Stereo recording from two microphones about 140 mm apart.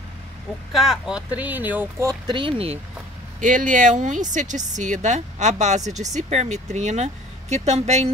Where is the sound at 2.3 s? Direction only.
40° right (ahead or behind).